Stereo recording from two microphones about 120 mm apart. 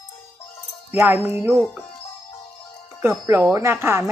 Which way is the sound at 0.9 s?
15° right (ahead or behind).